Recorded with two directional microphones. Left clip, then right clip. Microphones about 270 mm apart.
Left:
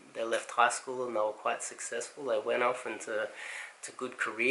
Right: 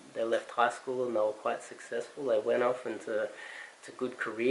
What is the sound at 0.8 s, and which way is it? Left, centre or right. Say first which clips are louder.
Speech: right 2 dB; centre.